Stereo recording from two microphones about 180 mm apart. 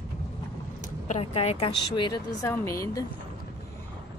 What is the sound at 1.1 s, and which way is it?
A woman's voice, 35° left (ahead or behind).